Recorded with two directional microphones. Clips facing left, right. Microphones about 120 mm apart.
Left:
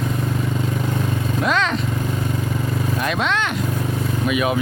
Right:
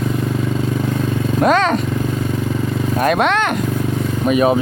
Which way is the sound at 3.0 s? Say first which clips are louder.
Right 8 dB; 55° right (ahead or behind).